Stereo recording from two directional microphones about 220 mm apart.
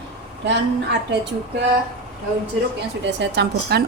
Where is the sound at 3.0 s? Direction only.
50° right (ahead or behind).